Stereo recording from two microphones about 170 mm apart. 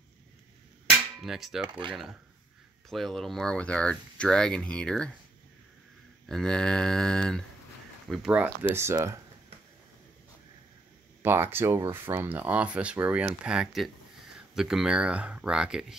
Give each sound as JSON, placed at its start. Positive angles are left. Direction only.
{"t": 0.8, "sound": "cap gun", "side_deg": 0}
{"t": 2.9, "sound": "speech", "side_deg": 0}
{"t": 6.2, "sound": "speech", "side_deg": 5}
{"t": 11.2, "sound": "speech", "side_deg": -15}